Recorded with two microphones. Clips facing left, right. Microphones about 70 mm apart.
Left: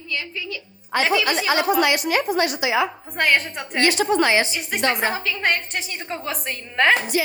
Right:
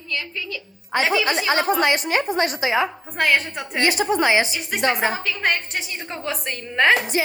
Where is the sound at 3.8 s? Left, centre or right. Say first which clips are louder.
Left 1 dB; centre.